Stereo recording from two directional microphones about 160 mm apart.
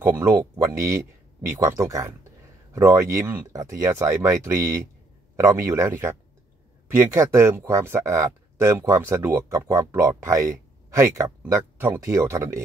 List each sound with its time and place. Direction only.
0.0 s speech: 15° right (ahead or behind)